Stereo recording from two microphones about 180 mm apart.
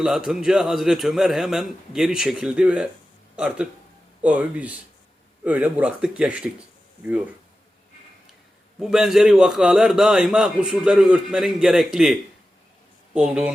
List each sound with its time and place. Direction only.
0.0 s a man's voice: 5° right (ahead or behind)
8.8 s a man's voice: centre (ahead or behind)